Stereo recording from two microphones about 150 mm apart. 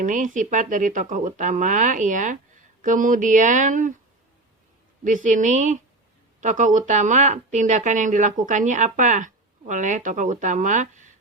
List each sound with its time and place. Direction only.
0.0 s speech: 60° right (ahead or behind)
5.0 s speech: 55° right (ahead or behind)